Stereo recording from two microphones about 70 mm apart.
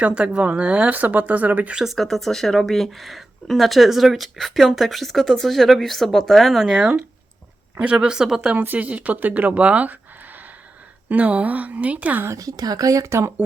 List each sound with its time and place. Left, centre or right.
0.0 s speech: centre
1.7 s speech: centre
8.5 s speech: right
12.4 s speech: right